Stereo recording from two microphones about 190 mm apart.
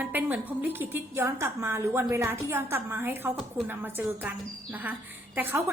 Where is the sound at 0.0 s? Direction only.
10° right (ahead or behind).